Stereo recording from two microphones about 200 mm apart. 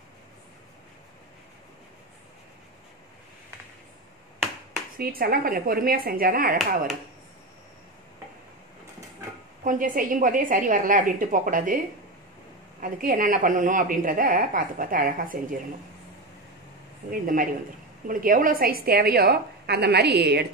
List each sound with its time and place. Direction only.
4.9 s a woman's voice: 50° right (ahead or behind)
9.7 s a woman's voice: 40° right (ahead or behind)
12.8 s a woman's voice: 45° right (ahead or behind)
17.1 s a woman's voice: 45° right (ahead or behind)